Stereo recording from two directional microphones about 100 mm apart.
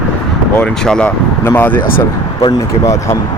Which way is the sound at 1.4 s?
20° left (ahead or behind).